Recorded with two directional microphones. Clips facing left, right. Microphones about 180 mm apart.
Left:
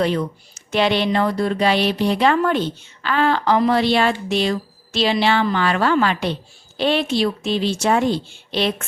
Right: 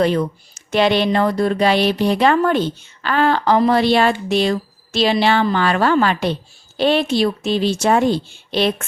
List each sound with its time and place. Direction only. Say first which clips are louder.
0.7 s speech: right 3 dB; 45° right (ahead or behind)